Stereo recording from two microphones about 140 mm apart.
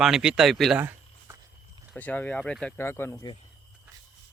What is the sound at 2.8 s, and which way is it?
Speech, 15° left (ahead or behind).